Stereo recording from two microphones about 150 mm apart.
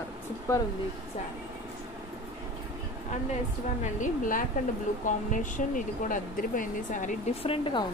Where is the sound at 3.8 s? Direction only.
60° left (ahead or behind).